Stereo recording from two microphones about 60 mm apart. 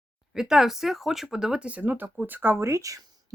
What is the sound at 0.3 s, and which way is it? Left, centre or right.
Speech, centre.